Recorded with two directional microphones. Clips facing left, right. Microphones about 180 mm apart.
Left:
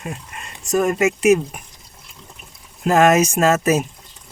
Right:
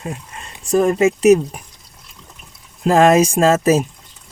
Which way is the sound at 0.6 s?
30° right (ahead or behind).